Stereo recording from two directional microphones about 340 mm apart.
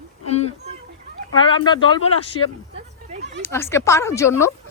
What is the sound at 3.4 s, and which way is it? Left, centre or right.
Speech, centre.